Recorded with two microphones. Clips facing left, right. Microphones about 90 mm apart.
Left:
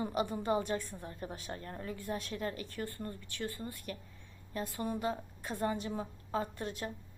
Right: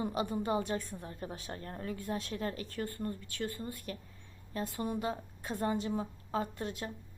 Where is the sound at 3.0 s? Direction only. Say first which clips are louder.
Right 3 dB; 30° right (ahead or behind).